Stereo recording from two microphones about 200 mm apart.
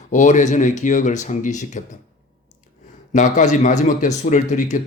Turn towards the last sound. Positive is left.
turn(degrees=35)  # may be behind; listen again after turning